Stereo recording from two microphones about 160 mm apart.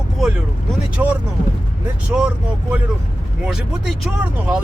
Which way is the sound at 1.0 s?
15° right (ahead or behind).